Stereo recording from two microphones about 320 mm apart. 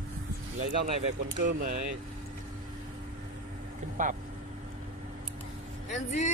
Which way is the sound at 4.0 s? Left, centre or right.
Right.